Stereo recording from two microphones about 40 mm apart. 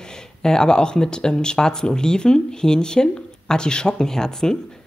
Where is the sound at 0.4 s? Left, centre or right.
Centre.